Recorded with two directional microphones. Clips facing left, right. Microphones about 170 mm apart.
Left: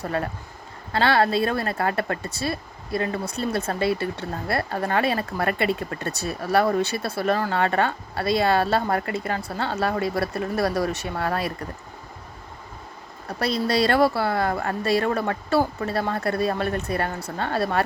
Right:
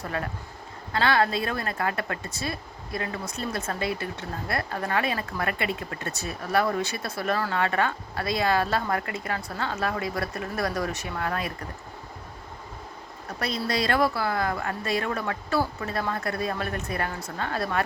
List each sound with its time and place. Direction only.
0.0 s speech: 35° left (ahead or behind)
13.4 s speech: 35° left (ahead or behind)